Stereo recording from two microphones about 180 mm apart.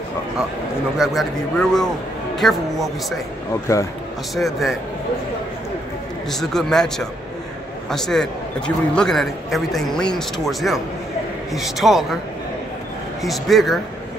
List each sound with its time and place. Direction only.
0.9 s a man's voice: centre (ahead or behind)
3.7 s speech: 20° left (ahead or behind)
4.4 s a man's voice: centre (ahead or behind)
6.3 s a man's voice: centre (ahead or behind)
13.2 s a man's voice: centre (ahead or behind)